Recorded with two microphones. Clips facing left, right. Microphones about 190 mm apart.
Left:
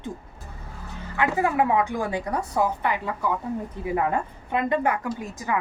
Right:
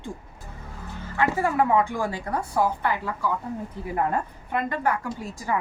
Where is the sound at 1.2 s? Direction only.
15° left (ahead or behind).